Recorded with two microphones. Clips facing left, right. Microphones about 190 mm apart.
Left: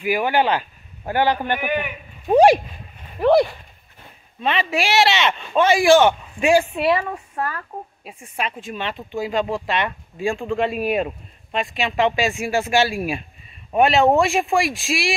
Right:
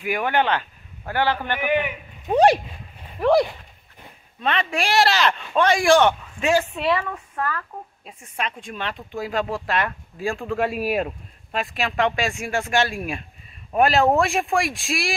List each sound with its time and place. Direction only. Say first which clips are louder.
0.0 s a man's voice: left 3 dB; 5° left (ahead or behind)
4.4 s speech: left 2 dB; 5° left (ahead or behind)
7.1 s speech: left 1 dB; 30° left (ahead or behind)
8.0 s speech: left 2 dB; 10° left (ahead or behind)